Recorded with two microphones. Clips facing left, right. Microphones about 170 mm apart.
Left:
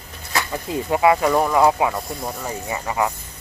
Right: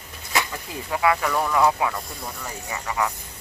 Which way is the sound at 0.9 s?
25° left (ahead or behind).